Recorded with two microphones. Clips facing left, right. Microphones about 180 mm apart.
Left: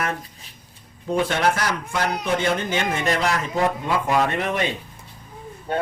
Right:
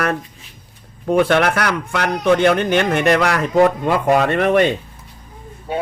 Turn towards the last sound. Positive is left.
turn(degrees=-5)  # may be behind; listen again after turning